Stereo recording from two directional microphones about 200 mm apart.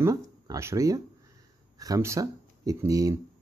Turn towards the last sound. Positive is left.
turn(degrees=-15)  # may be behind; listen again after turning